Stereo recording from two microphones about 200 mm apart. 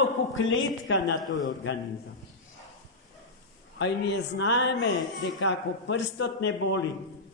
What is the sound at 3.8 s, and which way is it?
A man's voice, 60° left (ahead or behind).